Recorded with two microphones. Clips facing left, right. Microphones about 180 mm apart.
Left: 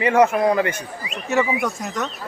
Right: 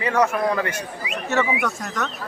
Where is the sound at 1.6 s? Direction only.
10° left (ahead or behind).